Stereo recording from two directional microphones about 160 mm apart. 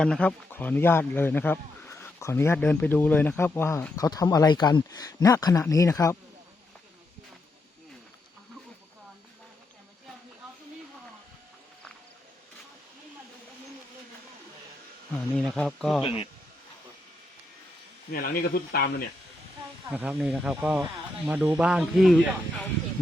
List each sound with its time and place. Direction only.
0.0 s a man's voice: 5° left (ahead or behind)
15.1 s speech: 5° left (ahead or behind)
16.0 s speech: 35° left (ahead or behind)
18.1 s speech: 65° left (ahead or behind)
19.9 s speech: 10° right (ahead or behind)